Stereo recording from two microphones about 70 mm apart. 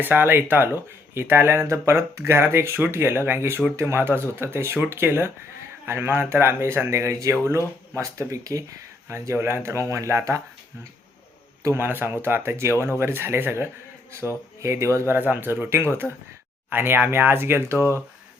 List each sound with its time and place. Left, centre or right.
0.0 s speech: right
11.7 s speech: right